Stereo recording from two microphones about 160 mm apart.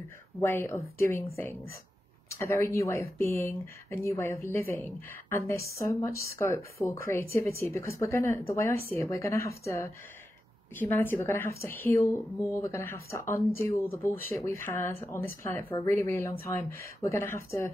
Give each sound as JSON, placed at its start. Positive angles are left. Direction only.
{"t": 0.4, "sound": "speech", "side_deg": 15}